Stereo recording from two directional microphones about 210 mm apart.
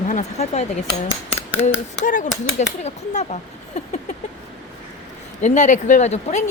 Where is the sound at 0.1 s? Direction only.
30° left (ahead or behind).